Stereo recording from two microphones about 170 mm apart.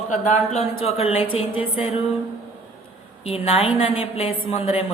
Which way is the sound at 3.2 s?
35° left (ahead or behind).